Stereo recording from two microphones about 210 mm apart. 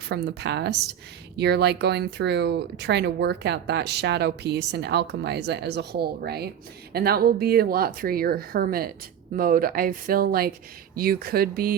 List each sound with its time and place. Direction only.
0.1 s speech: 55° right (ahead or behind)